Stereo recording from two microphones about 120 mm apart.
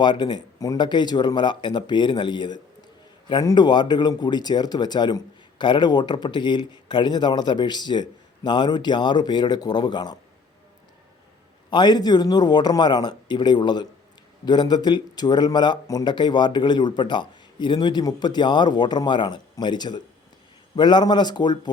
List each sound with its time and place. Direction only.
0.0 s speech: 40° left (ahead or behind)
11.7 s speech: 35° left (ahead or behind)